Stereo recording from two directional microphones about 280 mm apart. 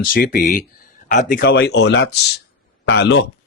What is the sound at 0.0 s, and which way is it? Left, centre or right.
Speech, left.